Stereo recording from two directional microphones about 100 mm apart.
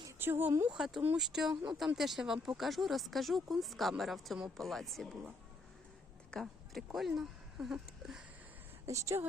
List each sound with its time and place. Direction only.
0.2 s speech: 20° right (ahead or behind)
0.7 s speech: 5° right (ahead or behind)
6.3 s speech: centre (ahead or behind)
8.9 s speech: 30° right (ahead or behind)